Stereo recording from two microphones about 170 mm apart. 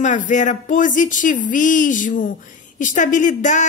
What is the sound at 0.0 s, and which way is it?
Speech, 45° left (ahead or behind).